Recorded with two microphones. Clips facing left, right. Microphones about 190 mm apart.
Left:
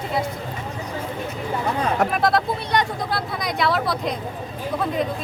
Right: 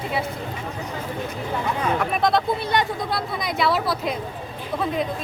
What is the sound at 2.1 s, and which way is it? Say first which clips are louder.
Speech: even; centre (ahead or behind).